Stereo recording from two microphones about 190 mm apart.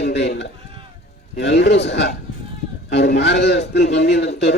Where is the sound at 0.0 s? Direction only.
60° left (ahead or behind).